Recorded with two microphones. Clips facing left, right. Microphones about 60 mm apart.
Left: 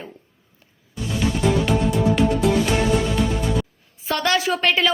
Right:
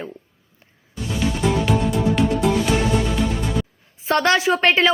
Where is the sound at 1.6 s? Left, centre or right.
Centre.